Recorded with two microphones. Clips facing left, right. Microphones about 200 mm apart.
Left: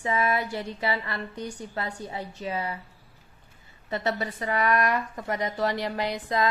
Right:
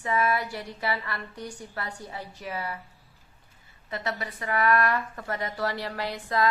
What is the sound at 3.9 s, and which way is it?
Speech, 30° left (ahead or behind).